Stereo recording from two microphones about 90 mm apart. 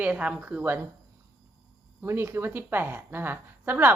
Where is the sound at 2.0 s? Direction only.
25° right (ahead or behind).